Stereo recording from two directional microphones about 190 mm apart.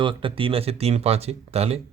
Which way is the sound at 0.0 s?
25° right (ahead or behind).